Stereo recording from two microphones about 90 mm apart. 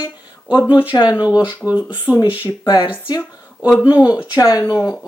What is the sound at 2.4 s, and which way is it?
Speech, 50° left (ahead or behind).